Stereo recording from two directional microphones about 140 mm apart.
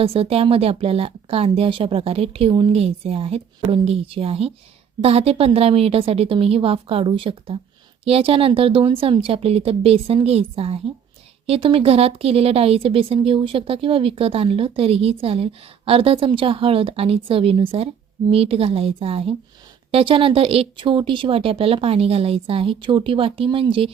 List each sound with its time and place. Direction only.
0.0 s speech: 45° right (ahead or behind)